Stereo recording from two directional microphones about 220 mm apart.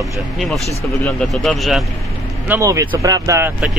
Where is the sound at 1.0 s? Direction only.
5° left (ahead or behind).